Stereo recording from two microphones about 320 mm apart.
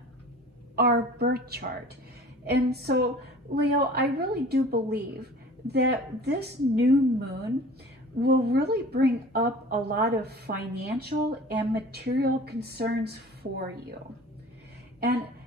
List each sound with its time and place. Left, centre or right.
0.7 s a woman's voice: right